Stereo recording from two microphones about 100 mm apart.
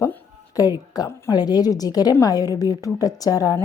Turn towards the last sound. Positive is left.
turn(degrees=35)  # may be behind; listen again after turning